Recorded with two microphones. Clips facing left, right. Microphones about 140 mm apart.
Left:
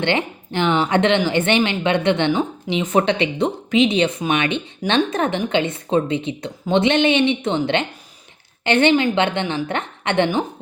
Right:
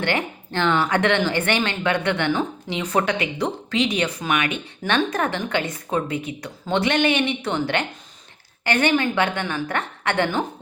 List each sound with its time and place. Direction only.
0.0 s a woman's voice: 20° left (ahead or behind)